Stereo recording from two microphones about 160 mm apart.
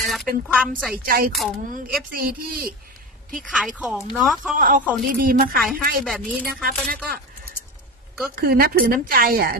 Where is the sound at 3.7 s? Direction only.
5° right (ahead or behind).